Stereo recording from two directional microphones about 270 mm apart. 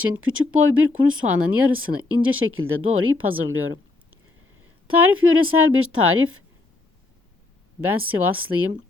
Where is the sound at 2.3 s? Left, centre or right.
Right.